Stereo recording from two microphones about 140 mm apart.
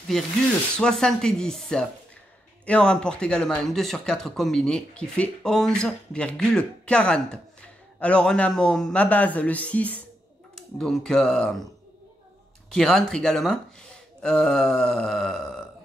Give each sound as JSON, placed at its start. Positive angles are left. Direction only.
{"t": 0.1, "sound": "speech", "side_deg": 5}
{"t": 12.7, "sound": "speech", "side_deg": 5}